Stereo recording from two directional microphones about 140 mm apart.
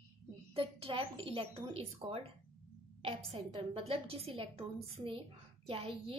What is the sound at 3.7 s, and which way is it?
A woman's voice, 45° right (ahead or behind).